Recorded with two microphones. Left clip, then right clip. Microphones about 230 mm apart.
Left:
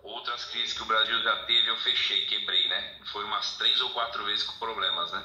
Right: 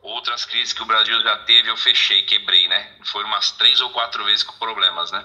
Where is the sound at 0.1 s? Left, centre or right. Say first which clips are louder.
Right 11 dB; right.